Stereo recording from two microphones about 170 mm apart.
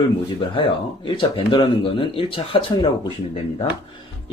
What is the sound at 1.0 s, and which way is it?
Speech, 30° left (ahead or behind).